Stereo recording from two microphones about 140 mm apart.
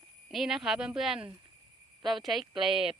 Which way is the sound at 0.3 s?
Centre (ahead or behind).